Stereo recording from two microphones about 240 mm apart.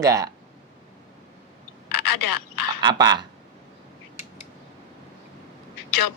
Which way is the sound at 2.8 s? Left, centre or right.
Centre.